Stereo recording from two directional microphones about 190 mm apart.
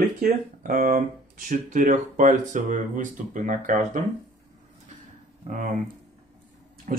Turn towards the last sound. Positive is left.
turn(degrees=-45)  # may be behind; listen again after turning